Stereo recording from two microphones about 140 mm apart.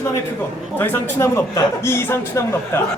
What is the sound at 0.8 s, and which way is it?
A man's voice, 15° left (ahead or behind).